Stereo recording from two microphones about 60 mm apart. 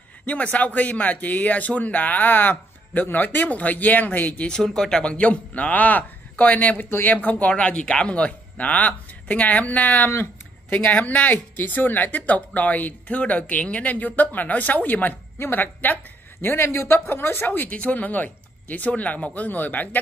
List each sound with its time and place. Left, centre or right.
0.3 s speech: left
4.5 s speech: centre
5.1 s a woman's voice: left